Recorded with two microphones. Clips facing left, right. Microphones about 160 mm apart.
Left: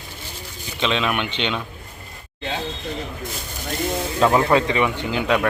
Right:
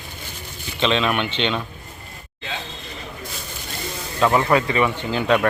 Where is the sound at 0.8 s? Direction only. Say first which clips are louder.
Right 2 dB; 10° left (ahead or behind).